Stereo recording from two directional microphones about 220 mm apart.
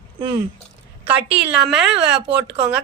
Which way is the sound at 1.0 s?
5° right (ahead or behind).